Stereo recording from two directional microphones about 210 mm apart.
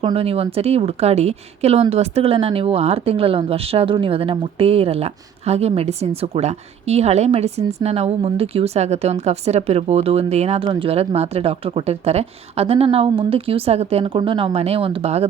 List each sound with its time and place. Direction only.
0.0 s speech: 25° right (ahead or behind)